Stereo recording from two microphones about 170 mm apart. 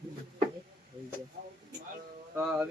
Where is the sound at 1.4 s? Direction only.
55° right (ahead or behind).